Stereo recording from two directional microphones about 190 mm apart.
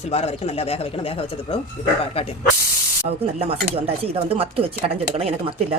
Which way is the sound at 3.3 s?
30° right (ahead or behind).